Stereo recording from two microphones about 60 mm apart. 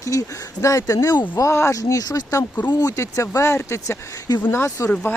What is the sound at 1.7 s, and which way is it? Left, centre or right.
Speech, left.